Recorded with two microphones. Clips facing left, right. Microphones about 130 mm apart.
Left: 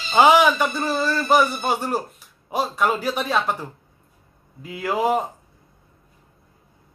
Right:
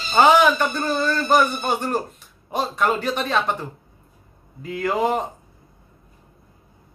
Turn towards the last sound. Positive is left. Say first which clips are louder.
# even
turn(degrees=5)  # may be behind; listen again after turning